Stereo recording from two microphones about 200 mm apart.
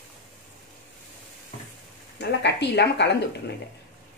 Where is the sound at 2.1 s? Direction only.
55° left (ahead or behind).